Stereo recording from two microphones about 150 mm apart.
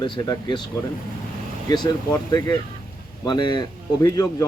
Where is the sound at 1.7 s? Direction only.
25° left (ahead or behind).